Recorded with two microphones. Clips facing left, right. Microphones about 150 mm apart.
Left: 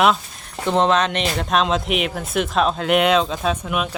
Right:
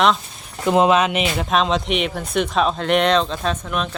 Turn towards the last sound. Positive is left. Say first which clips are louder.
# left 1 dB
turn(degrees=10)  # may be behind; listen again after turning